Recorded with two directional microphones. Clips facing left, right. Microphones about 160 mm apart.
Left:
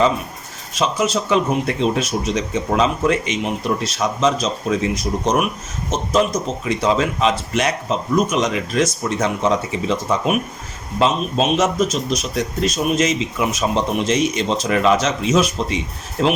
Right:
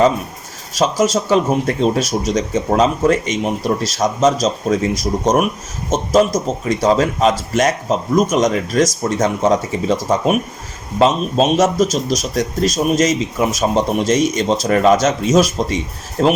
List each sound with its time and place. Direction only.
0.8 s a man's voice: 40° right (ahead or behind)
6.7 s a man's voice: 45° right (ahead or behind)